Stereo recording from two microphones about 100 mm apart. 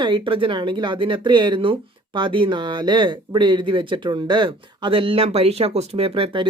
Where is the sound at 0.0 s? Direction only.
55° right (ahead or behind).